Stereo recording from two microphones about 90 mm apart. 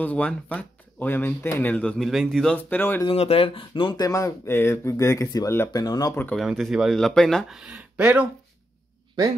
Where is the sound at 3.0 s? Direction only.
90° left.